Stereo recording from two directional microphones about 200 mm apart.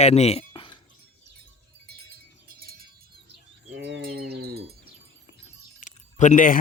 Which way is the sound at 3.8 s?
55° right (ahead or behind).